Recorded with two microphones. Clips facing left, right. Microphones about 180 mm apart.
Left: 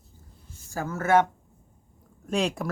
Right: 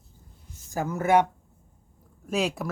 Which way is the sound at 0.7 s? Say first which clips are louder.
Even; 15° right (ahead or behind).